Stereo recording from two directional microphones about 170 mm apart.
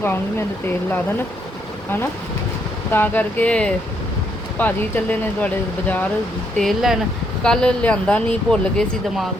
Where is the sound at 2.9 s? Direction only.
10° left (ahead or behind).